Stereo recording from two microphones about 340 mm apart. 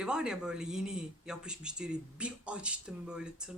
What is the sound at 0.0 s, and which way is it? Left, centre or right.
Speech, centre.